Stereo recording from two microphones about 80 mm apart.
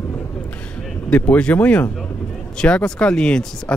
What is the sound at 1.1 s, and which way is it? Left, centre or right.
Speech, centre.